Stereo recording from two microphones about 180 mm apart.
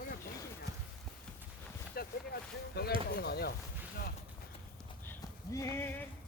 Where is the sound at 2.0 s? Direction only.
60° left (ahead or behind).